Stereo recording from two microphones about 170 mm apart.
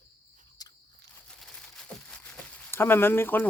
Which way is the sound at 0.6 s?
25° left (ahead or behind).